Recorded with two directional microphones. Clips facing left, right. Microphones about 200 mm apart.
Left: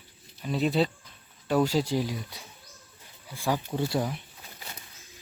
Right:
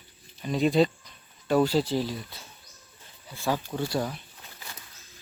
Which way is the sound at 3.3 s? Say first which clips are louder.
Even; 15° left (ahead or behind).